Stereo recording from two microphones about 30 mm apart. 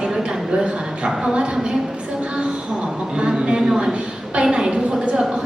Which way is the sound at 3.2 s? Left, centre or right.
Right.